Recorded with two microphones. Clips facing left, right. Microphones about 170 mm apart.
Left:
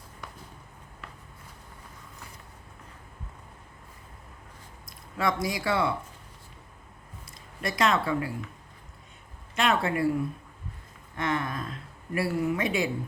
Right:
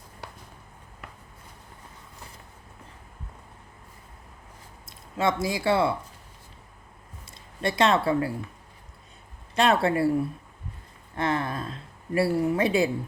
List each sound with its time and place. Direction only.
4.9 s speech: 25° right (ahead or behind)
7.6 s speech: 30° right (ahead or behind)
9.6 s speech: 35° right (ahead or behind)
11.1 s speech: 35° right (ahead or behind)